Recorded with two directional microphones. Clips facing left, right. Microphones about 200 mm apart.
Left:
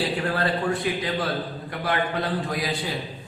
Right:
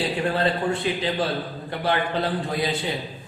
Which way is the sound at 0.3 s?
25° right (ahead or behind).